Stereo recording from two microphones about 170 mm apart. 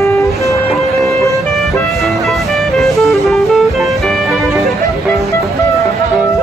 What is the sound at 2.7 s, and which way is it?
Music, centre (ahead or behind).